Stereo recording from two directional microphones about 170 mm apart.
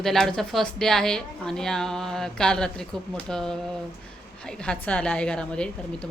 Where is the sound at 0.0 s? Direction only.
Centre (ahead or behind).